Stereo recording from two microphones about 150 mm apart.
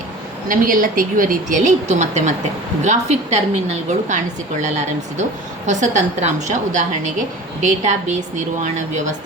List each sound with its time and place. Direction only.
0.4 s a woman's voice: 65° right (ahead or behind); by 4.2 s 50° right (ahead or behind)
5.6 s a woman's voice: 55° right (ahead or behind)